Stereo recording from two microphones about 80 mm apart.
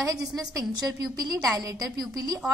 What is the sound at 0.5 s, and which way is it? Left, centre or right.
A woman's voice, right.